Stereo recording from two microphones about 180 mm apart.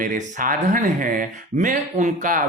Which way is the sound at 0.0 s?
50° right (ahead or behind).